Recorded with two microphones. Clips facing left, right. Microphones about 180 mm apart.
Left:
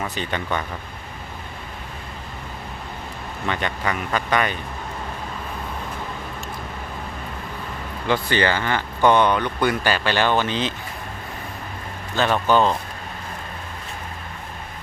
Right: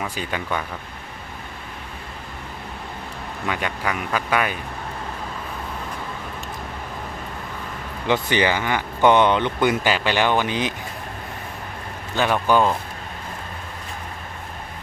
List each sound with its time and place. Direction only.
0.0 s speech: 10° right (ahead or behind)
3.4 s speech: 5° right (ahead or behind)
8.1 s speech: 15° right (ahead or behind)
12.2 s speech: 10° right (ahead or behind)